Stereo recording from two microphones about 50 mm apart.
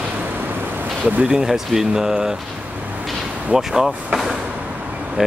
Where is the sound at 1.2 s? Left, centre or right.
Centre.